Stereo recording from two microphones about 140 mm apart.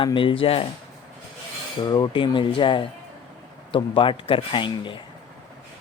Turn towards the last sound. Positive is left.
turn(degrees=35)  # may be behind; listen again after turning